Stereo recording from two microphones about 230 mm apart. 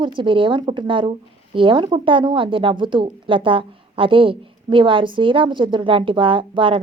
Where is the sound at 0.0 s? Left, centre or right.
Right.